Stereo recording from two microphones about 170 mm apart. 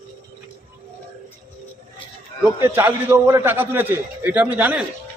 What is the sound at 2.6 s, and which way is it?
A man's voice, 15° right (ahead or behind).